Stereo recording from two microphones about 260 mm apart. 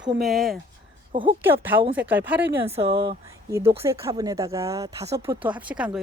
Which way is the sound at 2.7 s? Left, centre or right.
Right.